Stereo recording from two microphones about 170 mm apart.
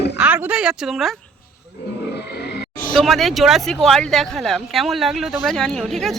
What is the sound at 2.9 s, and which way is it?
A man's voice, centre (ahead or behind).